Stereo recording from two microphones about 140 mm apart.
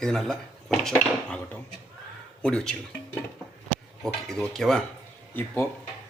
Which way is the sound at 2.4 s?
5° left (ahead or behind).